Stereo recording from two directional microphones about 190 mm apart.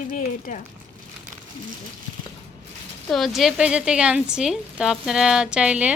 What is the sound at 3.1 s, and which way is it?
Speech, centre (ahead or behind).